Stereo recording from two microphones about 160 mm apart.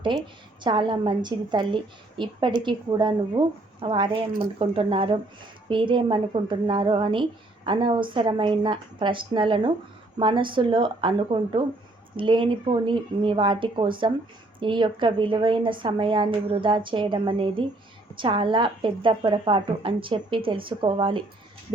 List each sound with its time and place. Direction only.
0.0 s a woman's voice: 30° right (ahead or behind)